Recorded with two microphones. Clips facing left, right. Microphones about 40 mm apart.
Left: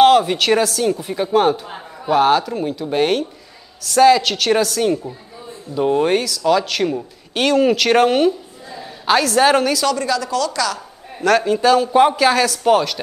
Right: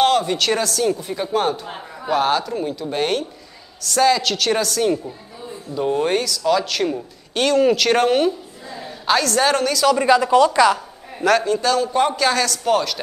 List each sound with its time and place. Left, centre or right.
0.0 s a woman's voice: centre
9.9 s a woman's voice: right
11.1 s a man's voice: centre
11.4 s speech: centre